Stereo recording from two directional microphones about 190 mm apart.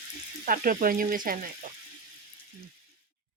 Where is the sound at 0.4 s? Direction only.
45° right (ahead or behind).